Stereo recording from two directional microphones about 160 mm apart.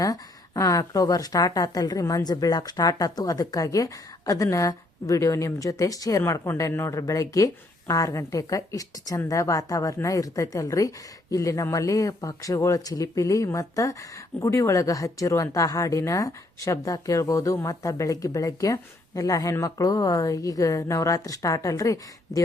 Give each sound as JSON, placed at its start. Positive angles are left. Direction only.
{"t": 0.0, "sound": "a woman's voice", "side_deg": 20}